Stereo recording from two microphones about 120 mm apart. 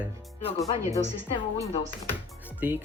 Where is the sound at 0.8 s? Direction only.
25° right (ahead or behind).